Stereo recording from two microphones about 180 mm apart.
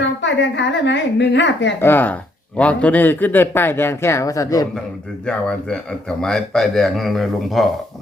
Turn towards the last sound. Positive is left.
turn(degrees=0)  # may be behind; listen again after turning